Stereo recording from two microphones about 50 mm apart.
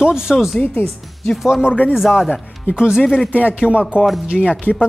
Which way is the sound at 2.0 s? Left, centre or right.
Centre.